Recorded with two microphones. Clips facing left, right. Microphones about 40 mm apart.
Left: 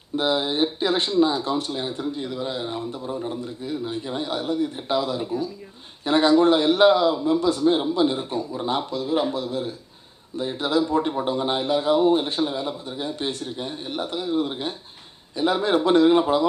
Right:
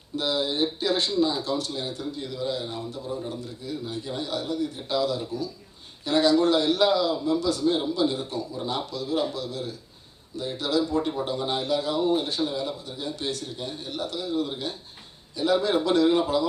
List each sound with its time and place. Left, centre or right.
0.2 s a man's voice: left